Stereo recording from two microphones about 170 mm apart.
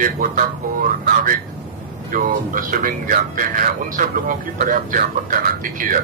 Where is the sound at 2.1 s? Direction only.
50° right (ahead or behind).